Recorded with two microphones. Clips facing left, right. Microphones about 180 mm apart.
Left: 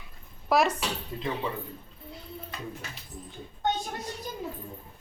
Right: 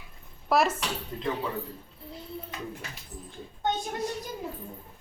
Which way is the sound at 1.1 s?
10° left (ahead or behind).